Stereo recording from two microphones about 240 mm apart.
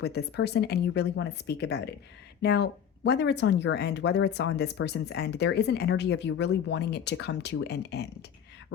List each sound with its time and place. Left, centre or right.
0.0 s speech: left